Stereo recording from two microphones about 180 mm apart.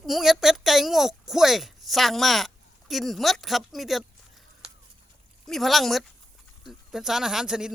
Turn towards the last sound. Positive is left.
turn(degrees=-5)  # may be behind; listen again after turning